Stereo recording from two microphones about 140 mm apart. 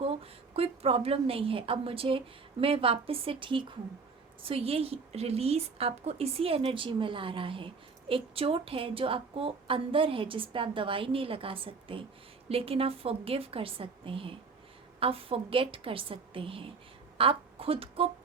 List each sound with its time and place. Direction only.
0.0 s a woman's voice: 45° right (ahead or behind)